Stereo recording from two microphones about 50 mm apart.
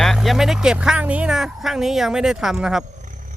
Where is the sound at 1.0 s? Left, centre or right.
Right.